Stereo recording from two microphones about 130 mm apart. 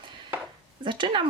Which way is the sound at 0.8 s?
40° right (ahead or behind).